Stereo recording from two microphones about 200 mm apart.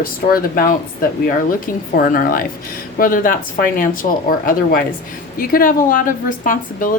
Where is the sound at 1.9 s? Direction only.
45° left (ahead or behind).